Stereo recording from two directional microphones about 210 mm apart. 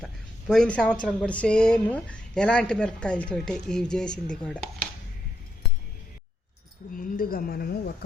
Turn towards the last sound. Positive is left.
turn(degrees=45)  # may be behind; listen again after turning